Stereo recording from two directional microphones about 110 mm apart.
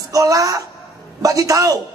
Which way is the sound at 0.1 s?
30° right (ahead or behind).